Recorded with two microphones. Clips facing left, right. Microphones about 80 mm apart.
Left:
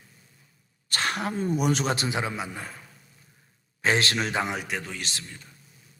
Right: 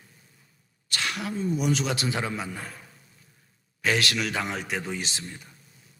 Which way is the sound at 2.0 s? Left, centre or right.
Centre.